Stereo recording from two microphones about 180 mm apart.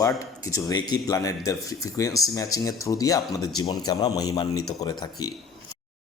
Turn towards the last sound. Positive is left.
turn(degrees=20)  # may be behind; listen again after turning